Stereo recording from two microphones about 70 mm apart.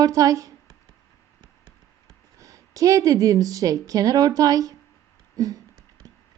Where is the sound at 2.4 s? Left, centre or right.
Right.